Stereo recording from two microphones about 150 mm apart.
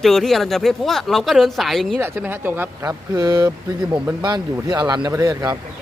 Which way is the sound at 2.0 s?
15° right (ahead or behind).